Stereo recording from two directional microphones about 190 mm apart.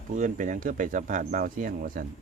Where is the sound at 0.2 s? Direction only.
40° right (ahead or behind).